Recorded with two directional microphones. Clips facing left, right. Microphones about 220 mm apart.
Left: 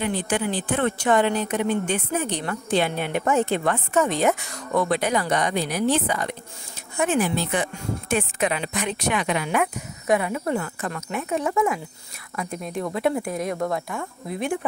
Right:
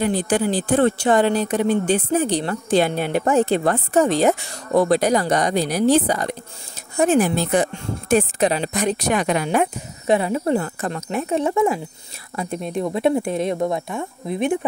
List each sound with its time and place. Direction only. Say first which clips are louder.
0.0 s speech: right 5 dB; 40° right (ahead or behind); by 14.6 s 20° right (ahead or behind)